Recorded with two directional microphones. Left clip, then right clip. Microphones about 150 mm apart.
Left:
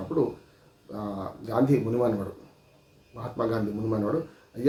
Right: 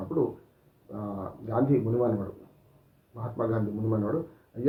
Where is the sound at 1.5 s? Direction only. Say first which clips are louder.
Left 2 dB; 15° left (ahead or behind).